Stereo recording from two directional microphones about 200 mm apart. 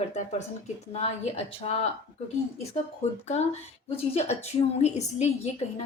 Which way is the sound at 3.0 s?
35° left (ahead or behind).